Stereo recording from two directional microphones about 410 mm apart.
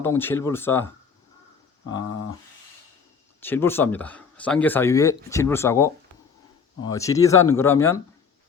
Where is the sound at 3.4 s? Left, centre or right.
Centre.